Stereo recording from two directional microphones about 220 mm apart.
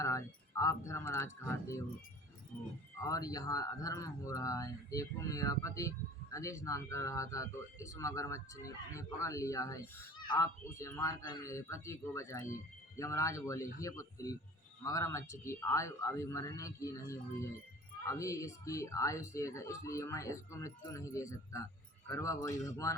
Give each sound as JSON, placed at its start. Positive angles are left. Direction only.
{"t": 0.0, "sound": "speech", "side_deg": 15}
{"t": 3.0, "sound": "speech", "side_deg": 15}